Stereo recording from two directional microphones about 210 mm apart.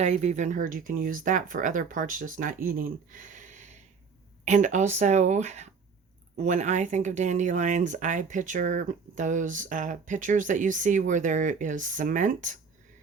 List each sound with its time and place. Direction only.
0.0 s speech: 35° right (ahead or behind)